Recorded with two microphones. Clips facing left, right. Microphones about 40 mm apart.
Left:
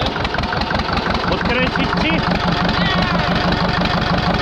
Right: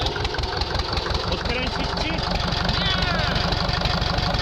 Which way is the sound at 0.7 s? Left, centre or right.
Left.